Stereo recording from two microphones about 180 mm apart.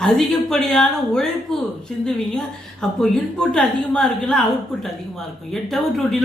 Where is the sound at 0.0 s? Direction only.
5° left (ahead or behind).